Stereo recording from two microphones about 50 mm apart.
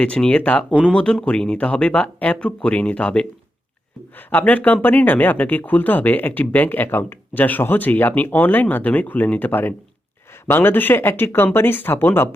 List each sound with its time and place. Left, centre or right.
0.0 s speech: left
4.3 s speech: left